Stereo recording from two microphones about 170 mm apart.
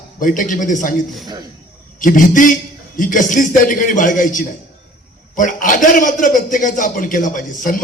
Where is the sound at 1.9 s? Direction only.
50° left (ahead or behind).